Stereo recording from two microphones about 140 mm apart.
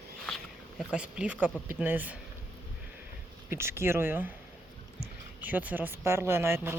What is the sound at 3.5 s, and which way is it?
Speech, 20° right (ahead or behind).